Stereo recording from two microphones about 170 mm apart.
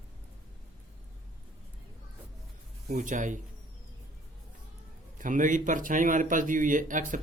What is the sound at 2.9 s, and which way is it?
Speech, 50° right (ahead or behind).